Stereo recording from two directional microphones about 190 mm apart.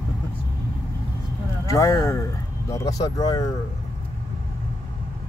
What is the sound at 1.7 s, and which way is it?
Speech, 15° left (ahead or behind).